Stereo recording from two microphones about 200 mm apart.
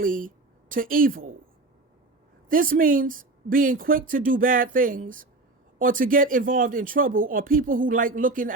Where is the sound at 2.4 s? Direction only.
45° right (ahead or behind).